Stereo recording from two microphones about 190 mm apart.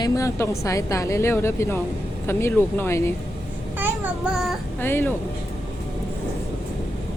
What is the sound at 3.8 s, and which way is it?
Child singing, 10° right (ahead or behind).